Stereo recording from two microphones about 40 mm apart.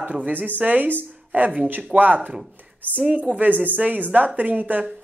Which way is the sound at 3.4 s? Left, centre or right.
Right.